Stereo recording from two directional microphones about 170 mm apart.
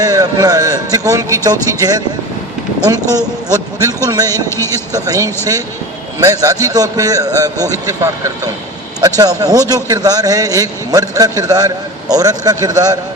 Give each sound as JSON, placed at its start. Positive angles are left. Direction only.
{"t": 0.0, "sound": "a man's voice", "side_deg": -20}
{"t": 2.8, "sound": "a man's voice", "side_deg": -20}
{"t": 4.4, "sound": "a man's voice", "side_deg": 15}
{"t": 4.7, "sound": "a man's voice", "side_deg": -20}